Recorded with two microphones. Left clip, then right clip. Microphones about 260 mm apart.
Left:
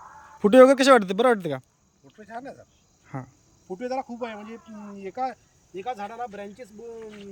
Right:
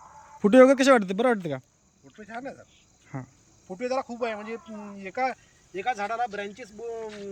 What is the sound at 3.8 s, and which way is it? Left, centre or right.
Speech, centre.